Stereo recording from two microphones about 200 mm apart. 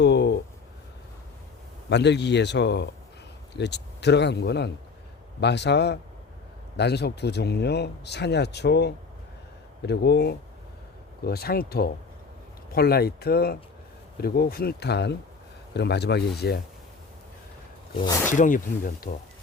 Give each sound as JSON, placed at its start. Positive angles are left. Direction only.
{"t": 0.0, "sound": "a sound", "side_deg": 60}
{"t": 1.9, "sound": "speech", "side_deg": 60}
{"t": 18.3, "sound": "speech", "side_deg": 40}